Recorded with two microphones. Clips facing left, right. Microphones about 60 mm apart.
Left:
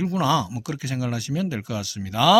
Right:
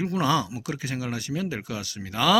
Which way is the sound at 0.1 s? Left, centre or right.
Right.